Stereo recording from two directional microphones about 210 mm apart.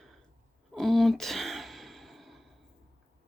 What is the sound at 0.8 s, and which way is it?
Sigh, centre (ahead or behind).